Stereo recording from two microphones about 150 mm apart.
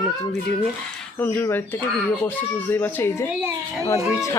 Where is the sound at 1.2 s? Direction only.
10° left (ahead or behind).